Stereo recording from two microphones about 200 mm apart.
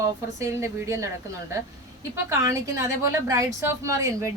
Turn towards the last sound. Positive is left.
turn(degrees=-15)  # may be behind; listen again after turning